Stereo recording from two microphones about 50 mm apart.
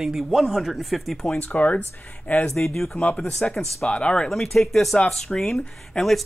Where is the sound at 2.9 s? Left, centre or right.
Left.